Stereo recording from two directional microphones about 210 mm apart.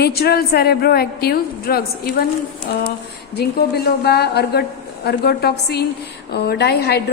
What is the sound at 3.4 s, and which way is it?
A woman's voice, 50° left (ahead or behind).